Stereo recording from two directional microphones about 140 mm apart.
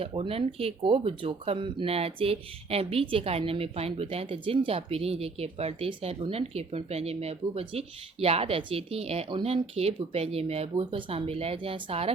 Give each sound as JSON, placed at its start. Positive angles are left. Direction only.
{"t": 0.0, "sound": "speech", "side_deg": -45}